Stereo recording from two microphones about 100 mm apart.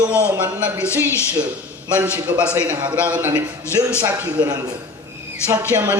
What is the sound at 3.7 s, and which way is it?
Speech, 25° left (ahead or behind).